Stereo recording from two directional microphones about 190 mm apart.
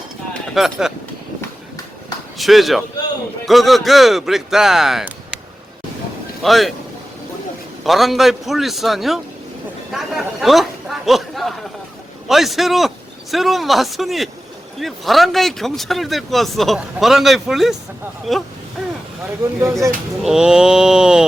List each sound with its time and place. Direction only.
0.5 s speech: centre (ahead or behind)
1.4 s a sound: 20° left (ahead or behind)
2.4 s speech: centre (ahead or behind)
6.4 s speech: centre (ahead or behind)
7.9 s speech: centre (ahead or behind)
20.2 s speech: 5° right (ahead or behind)